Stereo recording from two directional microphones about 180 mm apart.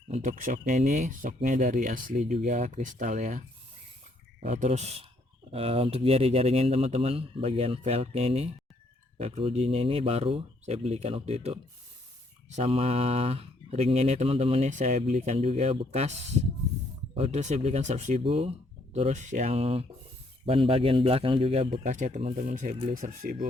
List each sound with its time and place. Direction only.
0.1 s speech: 45° right (ahead or behind)
17.2 s speech: 35° right (ahead or behind)